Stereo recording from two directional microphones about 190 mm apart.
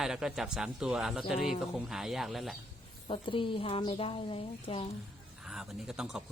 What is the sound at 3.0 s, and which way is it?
A woman's voice, 25° left (ahead or behind).